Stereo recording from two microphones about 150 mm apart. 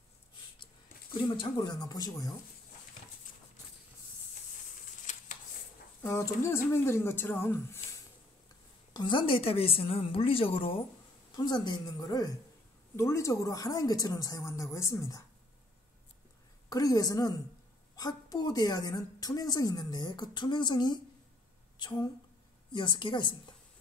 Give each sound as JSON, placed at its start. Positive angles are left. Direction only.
{"t": 1.3, "sound": "a woman's voice", "side_deg": 30}
{"t": 6.0, "sound": "speech", "side_deg": 20}
{"t": 8.9, "sound": "a woman's voice", "side_deg": 30}
{"t": 16.6, "sound": "a woman's voice", "side_deg": 25}